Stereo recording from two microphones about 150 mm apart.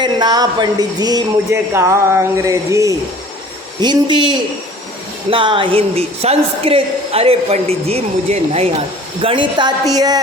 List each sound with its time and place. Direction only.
0.0 s speech: 25° right (ahead or behind)
3.8 s a man's voice: 30° right (ahead or behind)